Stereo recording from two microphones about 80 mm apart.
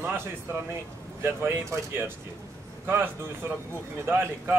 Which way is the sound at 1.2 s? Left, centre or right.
Right.